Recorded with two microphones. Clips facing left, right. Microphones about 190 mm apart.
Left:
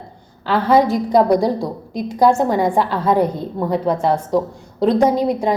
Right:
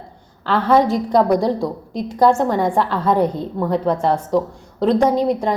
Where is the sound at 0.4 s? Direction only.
5° left (ahead or behind).